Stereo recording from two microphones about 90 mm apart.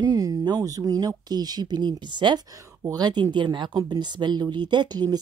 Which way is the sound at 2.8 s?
45° right (ahead or behind).